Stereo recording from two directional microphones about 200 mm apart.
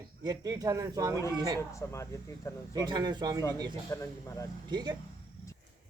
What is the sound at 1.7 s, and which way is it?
Speech, 15° left (ahead or behind).